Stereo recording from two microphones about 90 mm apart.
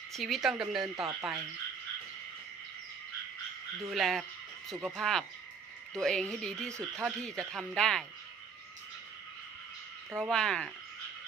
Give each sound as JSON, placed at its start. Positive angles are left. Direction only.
{"t": 0.1, "sound": "speech", "side_deg": 0}
{"t": 3.8, "sound": "speech", "side_deg": 0}
{"t": 10.2, "sound": "speech", "side_deg": 5}